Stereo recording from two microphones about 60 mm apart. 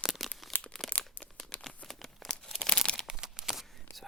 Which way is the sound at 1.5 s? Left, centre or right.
Left.